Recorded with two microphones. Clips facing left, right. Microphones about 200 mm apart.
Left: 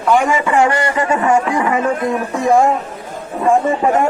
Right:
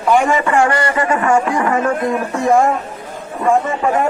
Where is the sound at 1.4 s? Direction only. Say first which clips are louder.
Even; 10° left (ahead or behind).